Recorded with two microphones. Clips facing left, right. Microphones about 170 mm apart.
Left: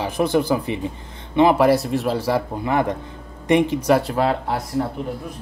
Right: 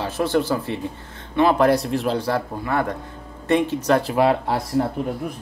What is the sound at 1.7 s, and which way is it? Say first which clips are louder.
Speech: left 1 dB; centre (ahead or behind).